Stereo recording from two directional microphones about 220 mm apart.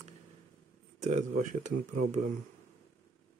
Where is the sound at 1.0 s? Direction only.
35° right (ahead or behind).